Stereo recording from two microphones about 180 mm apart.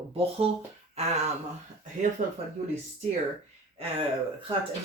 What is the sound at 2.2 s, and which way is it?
Speech, 40° right (ahead or behind).